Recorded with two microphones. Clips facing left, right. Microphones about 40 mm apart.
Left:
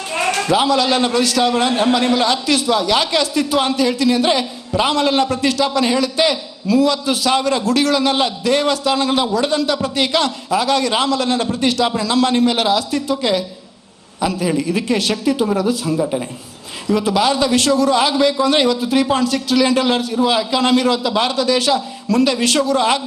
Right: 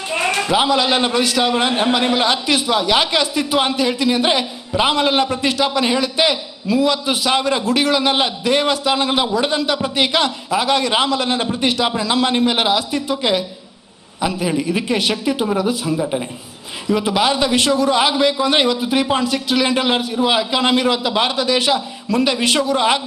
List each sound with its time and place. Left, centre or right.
0.1 s a man's voice: centre